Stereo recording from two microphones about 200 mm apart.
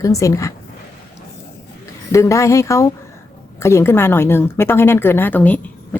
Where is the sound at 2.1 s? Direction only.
15° left (ahead or behind).